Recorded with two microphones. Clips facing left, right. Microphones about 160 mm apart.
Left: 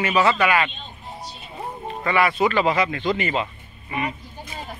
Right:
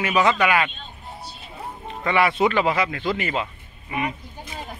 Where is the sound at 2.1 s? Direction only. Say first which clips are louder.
Right 1 dB; 25° right (ahead or behind).